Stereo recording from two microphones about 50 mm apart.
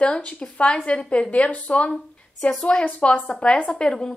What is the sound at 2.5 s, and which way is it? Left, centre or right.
A woman's voice, centre.